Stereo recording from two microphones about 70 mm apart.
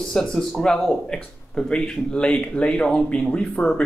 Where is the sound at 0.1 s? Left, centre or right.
Centre.